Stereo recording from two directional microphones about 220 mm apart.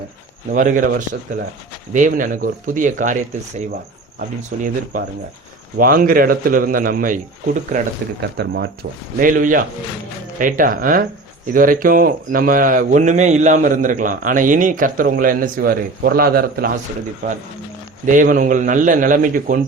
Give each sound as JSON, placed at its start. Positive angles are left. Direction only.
{"t": 0.5, "sound": "speech", "side_deg": -40}
{"t": 4.6, "sound": "speech", "side_deg": -40}
{"t": 8.4, "sound": "speech", "side_deg": -50}
{"t": 18.0, "sound": "speech", "side_deg": -35}